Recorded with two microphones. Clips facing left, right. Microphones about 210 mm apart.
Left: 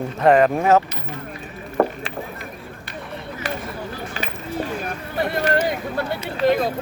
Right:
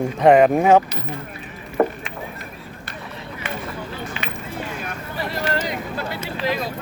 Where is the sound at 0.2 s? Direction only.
15° right (ahead or behind).